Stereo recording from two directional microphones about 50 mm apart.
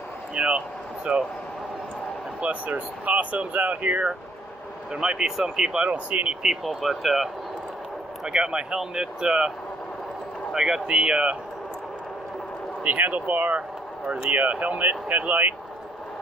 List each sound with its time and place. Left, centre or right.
0.3 s speech: right
2.4 s speech: right
4.9 s speech: centre
5.9 s speech: right
6.4 s speech: centre
8.3 s speech: centre
10.5 s speech: centre
12.8 s speech: right
13.6 s vehicle: right
14.3 s speech: right